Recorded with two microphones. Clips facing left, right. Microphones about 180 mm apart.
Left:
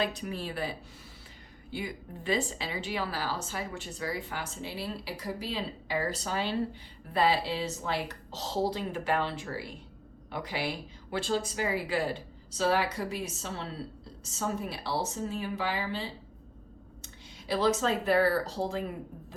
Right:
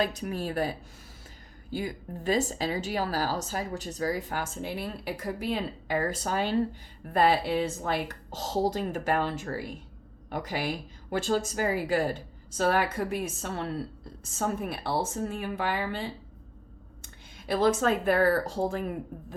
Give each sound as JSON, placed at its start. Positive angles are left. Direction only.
{"t": 0.0, "sound": "a woman's voice", "side_deg": -45}
{"t": 17.5, "sound": "a woman's voice", "side_deg": -50}